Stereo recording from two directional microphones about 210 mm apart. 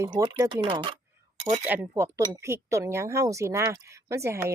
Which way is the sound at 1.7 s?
10° right (ahead or behind).